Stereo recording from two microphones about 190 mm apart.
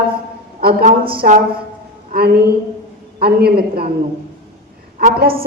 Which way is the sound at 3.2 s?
55° right (ahead or behind).